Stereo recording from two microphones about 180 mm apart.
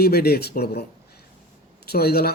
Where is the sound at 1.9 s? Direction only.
60° left (ahead or behind).